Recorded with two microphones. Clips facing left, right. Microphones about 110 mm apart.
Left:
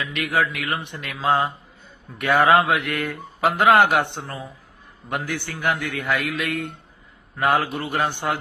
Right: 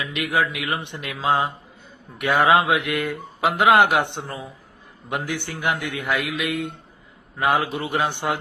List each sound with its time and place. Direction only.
0.1 s a man's voice: 20° right (ahead or behind)